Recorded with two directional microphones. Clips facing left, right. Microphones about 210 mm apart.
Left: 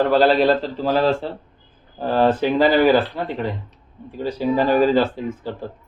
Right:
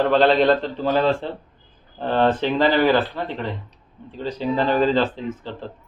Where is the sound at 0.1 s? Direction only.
5° left (ahead or behind).